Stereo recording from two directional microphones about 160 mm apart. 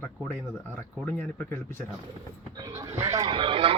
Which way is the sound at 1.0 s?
10° left (ahead or behind).